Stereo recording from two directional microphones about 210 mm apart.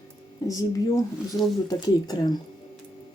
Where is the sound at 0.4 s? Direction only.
20° left (ahead or behind).